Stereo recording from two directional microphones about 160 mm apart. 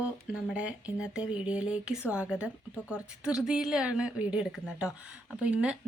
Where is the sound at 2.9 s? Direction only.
5° right (ahead or behind).